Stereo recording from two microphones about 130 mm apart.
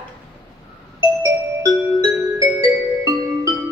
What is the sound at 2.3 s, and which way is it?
Music, 25° right (ahead or behind).